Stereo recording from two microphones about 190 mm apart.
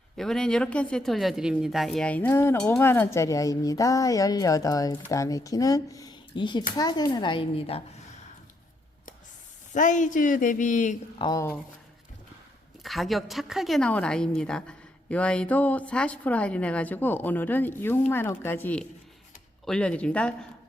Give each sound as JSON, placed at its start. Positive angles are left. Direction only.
{"t": 0.2, "sound": "a woman's voice", "side_deg": 5}
{"t": 9.7, "sound": "speech", "side_deg": 40}
{"t": 11.2, "sound": "a woman's voice", "side_deg": 20}
{"t": 12.8, "sound": "speech", "side_deg": 0}